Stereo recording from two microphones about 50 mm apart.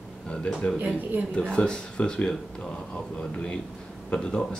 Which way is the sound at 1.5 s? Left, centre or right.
Centre.